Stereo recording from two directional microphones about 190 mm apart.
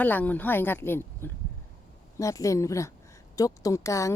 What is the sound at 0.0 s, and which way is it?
Speech, 10° left (ahead or behind).